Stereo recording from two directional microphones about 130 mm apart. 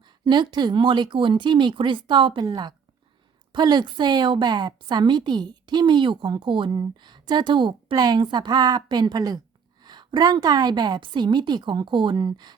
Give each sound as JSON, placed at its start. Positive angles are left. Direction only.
{"t": 0.3, "sound": "a woman's voice", "side_deg": -35}